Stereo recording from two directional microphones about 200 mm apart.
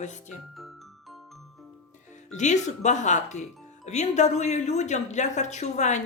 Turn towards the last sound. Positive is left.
turn(degrees=35)  # may be behind; listen again after turning